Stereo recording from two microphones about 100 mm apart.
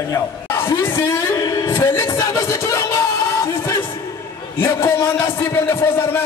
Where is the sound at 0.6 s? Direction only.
30° left (ahead or behind).